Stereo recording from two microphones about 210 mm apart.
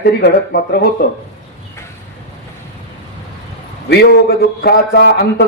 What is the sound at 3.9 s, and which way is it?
A man's voice, 50° left (ahead or behind).